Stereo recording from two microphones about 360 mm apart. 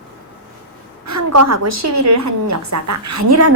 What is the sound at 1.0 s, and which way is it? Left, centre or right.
A woman's voice, right.